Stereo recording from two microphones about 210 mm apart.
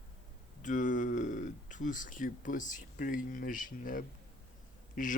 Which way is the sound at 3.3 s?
40° left (ahead or behind).